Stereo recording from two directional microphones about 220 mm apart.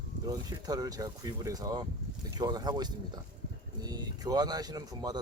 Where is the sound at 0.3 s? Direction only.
15° right (ahead or behind).